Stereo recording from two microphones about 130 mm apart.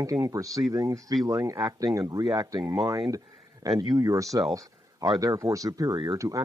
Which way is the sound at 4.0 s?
25° right (ahead or behind).